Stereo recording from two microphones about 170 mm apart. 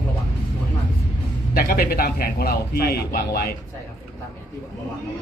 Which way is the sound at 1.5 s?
60° left (ahead or behind).